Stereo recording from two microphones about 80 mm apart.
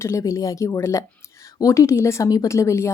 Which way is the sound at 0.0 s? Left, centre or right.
Left.